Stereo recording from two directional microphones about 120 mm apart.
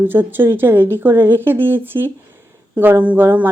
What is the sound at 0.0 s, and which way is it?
A woman's voice, 15° right (ahead or behind).